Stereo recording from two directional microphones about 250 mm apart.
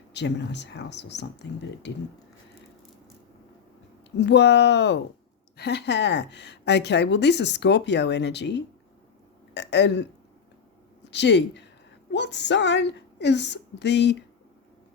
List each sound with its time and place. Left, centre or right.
0.1 s a woman's voice: left
4.2 s a woman's voice: left
11.1 s a woman's voice: left